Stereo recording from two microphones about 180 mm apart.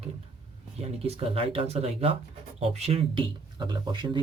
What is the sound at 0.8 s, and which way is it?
Speech, 35° right (ahead or behind).